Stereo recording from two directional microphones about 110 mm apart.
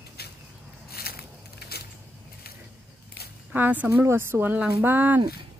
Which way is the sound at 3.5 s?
15° right (ahead or behind).